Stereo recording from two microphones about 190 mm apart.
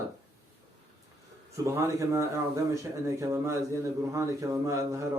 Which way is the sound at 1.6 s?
15° right (ahead or behind).